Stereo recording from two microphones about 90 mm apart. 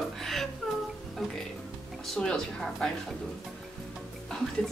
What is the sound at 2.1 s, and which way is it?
Speech, 5° left (ahead or behind).